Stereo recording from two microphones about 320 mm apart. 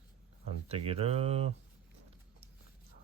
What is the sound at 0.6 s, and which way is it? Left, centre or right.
Speech, centre.